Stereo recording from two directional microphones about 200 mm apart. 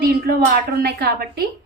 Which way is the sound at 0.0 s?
50° right (ahead or behind).